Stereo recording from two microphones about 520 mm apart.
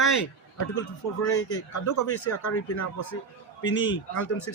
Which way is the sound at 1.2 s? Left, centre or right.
Left.